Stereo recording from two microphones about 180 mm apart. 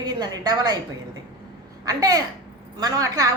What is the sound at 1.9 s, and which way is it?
A woman's voice, 20° right (ahead or behind).